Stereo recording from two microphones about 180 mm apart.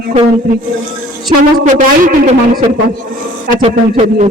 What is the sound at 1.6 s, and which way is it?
A man's voice, 45° right (ahead or behind).